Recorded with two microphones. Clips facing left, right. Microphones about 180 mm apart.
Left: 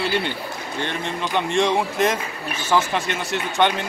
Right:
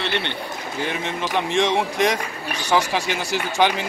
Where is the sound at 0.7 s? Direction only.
5° right (ahead or behind).